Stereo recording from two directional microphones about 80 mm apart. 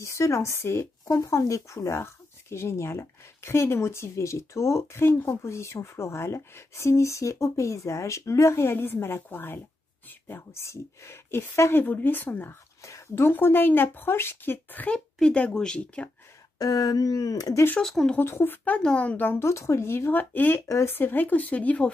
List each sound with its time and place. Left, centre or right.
0.0 s a woman's voice: left
12.8 s a woman's voice: left; by 16.1 s centre
16.5 s speech: left
17.7 s speech: centre
18.1 s a woman's voice: left
18.6 s speech: centre
19.4 s a woman's voice: left; by 21.9 s centre